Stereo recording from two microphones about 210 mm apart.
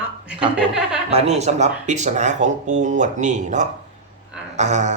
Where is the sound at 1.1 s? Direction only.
30° right (ahead or behind).